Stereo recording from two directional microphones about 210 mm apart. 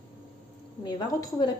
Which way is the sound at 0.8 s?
20° left (ahead or behind).